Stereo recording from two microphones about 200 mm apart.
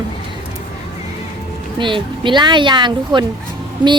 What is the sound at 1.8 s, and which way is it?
A woman's voice, 25° right (ahead or behind).